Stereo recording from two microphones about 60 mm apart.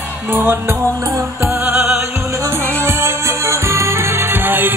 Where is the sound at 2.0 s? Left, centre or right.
Right.